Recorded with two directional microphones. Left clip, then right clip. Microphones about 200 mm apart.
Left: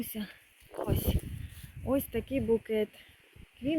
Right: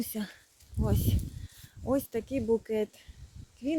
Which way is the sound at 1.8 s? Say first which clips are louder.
Right 1 dB; 5° right (ahead or behind).